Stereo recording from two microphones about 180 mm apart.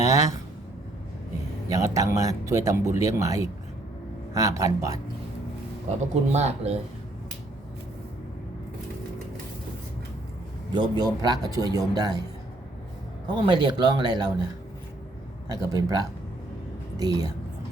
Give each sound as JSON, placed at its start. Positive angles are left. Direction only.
{"t": 0.0, "sound": "a sound", "side_deg": -20}
{"t": 1.7, "sound": "speech", "side_deg": -20}
{"t": 6.0, "sound": "speech", "side_deg": -35}
{"t": 10.7, "sound": "speech", "side_deg": -25}
{"t": 13.2, "sound": "speech", "side_deg": -25}
{"t": 15.4, "sound": "speech", "side_deg": -20}